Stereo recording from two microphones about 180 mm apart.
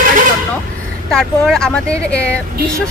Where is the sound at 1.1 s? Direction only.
5° left (ahead or behind).